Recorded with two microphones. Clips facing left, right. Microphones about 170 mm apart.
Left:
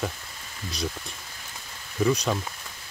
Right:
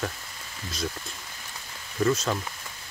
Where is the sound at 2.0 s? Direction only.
15° left (ahead or behind).